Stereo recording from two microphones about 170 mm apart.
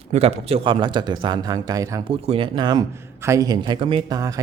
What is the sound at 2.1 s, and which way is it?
Speech, 35° right (ahead or behind).